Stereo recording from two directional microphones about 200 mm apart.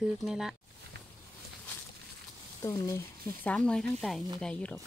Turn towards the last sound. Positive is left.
turn(degrees=5)  # may be behind; listen again after turning